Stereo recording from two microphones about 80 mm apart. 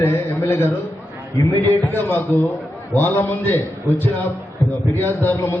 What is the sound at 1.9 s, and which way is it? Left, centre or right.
A man's voice, left.